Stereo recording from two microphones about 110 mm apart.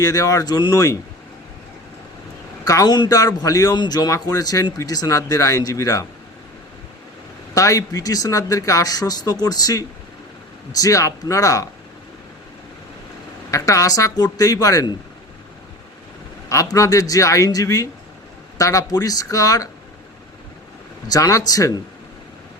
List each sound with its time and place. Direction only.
0.0 s a man's voice: 35° left (ahead or behind)
2.6 s a man's voice: 35° left (ahead or behind)
7.5 s a man's voice: 30° left (ahead or behind)
13.5 s a man's voice: 30° left (ahead or behind)
16.5 s a man's voice: 30° left (ahead or behind)
21.1 s a man's voice: 30° left (ahead or behind)